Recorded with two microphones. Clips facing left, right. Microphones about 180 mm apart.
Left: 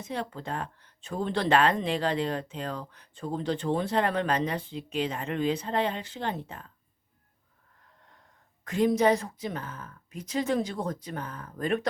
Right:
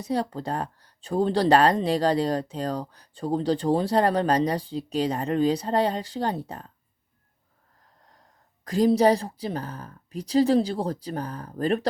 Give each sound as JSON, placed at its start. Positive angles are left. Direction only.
{"t": 0.0, "sound": "speech", "side_deg": -35}
{"t": 8.6, "sound": "speech", "side_deg": -35}